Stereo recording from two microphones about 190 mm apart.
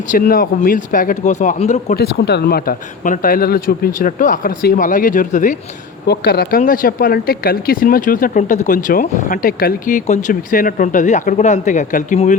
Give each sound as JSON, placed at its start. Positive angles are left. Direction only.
{"t": 0.1, "sound": "speech", "side_deg": 45}
{"t": 2.0, "sound": "speech", "side_deg": 60}
{"t": 6.1, "sound": "speech", "side_deg": 55}